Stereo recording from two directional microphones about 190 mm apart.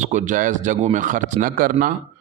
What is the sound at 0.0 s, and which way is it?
A man's voice, 40° right (ahead or behind).